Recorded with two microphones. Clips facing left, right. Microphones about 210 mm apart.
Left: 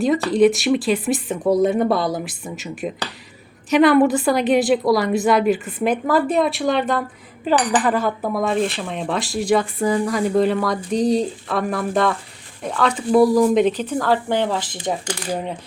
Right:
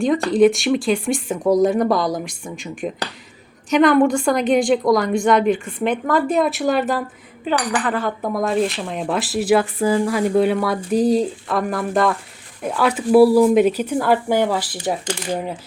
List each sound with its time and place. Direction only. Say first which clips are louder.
0.0 s a woman's voice: right 1 dB; centre (ahead or behind)
7.5 s speech: left 3 dB; 20° left (ahead or behind)
8.0 s a woman's voice: even; centre (ahead or behind)